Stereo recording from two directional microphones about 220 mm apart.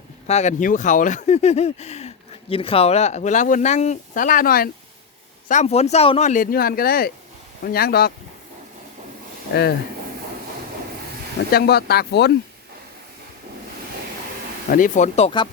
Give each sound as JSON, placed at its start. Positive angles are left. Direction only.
{"t": 0.3, "sound": "speech", "side_deg": 30}
{"t": 5.5, "sound": "speech", "side_deg": 30}
{"t": 11.5, "sound": "speech", "side_deg": 45}
{"t": 14.7, "sound": "speech", "side_deg": 35}